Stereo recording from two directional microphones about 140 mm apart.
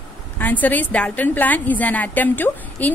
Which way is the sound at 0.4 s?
10° left (ahead or behind).